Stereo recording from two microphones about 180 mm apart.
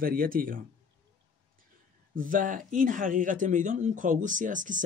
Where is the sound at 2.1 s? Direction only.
50° right (ahead or behind).